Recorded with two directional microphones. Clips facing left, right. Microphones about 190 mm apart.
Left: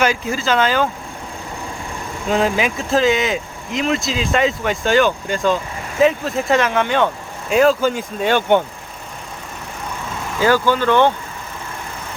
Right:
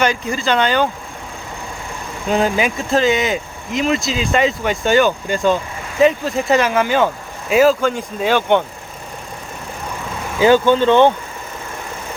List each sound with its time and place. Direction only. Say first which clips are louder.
0.0 s speech: even; 5° left (ahead or behind)
2.3 s speech: right 1 dB; centre (ahead or behind)
10.4 s speech: right 4 dB; 20° right (ahead or behind)